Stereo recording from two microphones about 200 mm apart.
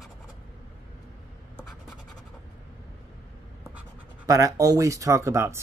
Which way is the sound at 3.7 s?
15° right (ahead or behind).